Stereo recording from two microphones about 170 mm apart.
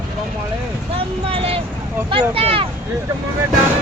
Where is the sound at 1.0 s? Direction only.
35° right (ahead or behind).